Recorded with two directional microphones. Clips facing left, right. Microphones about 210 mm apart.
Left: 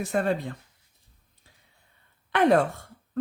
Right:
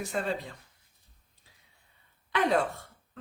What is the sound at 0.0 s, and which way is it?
Speech, 60° left (ahead or behind).